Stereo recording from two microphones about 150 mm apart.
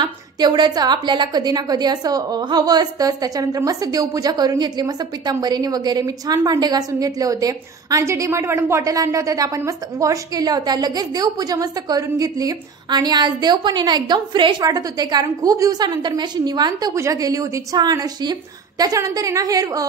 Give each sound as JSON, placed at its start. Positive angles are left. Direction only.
{"t": 0.0, "sound": "a woman's voice", "side_deg": -30}